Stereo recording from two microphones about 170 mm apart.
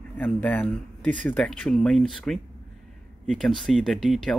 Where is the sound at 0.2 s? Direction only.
10° left (ahead or behind).